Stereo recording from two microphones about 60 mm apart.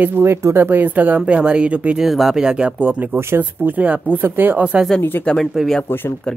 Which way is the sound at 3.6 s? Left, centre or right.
Right.